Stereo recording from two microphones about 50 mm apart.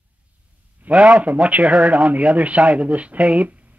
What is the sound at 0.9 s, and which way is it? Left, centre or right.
Speech, right.